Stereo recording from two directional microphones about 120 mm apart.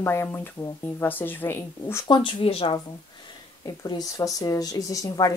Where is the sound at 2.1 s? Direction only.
40° left (ahead or behind).